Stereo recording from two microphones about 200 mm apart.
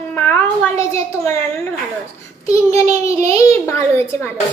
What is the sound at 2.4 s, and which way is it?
Speech, 15° left (ahead or behind).